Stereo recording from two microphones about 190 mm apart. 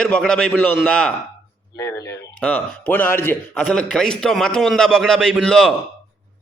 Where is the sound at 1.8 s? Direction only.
15° left (ahead or behind).